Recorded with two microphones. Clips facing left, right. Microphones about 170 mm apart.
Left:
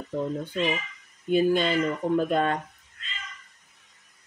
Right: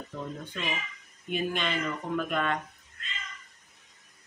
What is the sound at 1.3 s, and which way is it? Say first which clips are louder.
Speech: left 9 dB; 35° left (ahead or behind).